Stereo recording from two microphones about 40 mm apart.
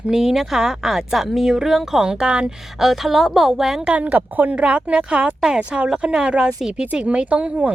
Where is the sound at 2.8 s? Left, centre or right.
Centre.